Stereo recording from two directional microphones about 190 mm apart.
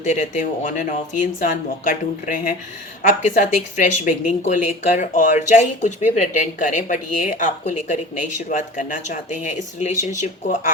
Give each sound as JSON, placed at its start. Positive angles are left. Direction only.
{"t": 0.0, "sound": "speech", "side_deg": 40}